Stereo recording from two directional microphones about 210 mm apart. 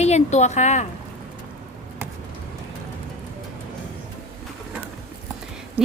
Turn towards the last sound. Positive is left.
turn(degrees=-5)  # may be behind; listen again after turning